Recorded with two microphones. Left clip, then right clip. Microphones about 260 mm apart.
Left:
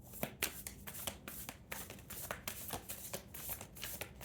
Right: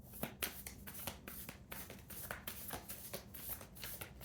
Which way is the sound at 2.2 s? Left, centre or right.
Left.